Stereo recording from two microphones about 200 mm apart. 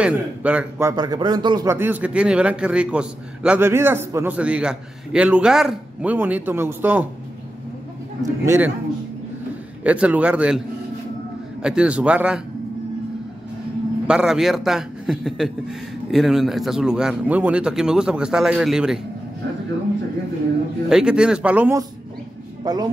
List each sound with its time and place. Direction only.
0.0 s a man's voice: 5° right (ahead or behind)
8.2 s a man's voice: 15° right (ahead or behind)
9.8 s a man's voice: 5° right (ahead or behind)
11.6 s speech: 5° right (ahead or behind)
14.0 s speech: 5° right (ahead or behind)
20.9 s speech: 5° right (ahead or behind); by 22.8 s 20° right (ahead or behind)